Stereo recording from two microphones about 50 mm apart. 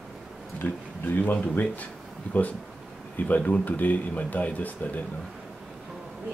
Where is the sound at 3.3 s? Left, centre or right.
Left.